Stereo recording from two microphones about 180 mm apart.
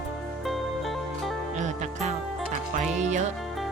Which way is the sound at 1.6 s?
40° right (ahead or behind).